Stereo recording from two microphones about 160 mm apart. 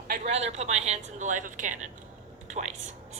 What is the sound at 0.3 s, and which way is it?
A woman's voice, 45° right (ahead or behind).